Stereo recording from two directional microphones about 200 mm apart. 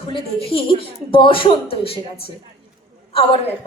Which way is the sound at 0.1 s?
25° left (ahead or behind).